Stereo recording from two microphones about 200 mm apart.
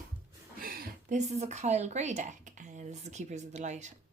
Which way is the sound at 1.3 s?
35° right (ahead or behind).